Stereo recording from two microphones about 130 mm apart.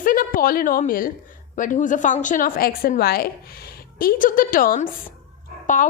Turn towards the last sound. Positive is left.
turn(degrees=90)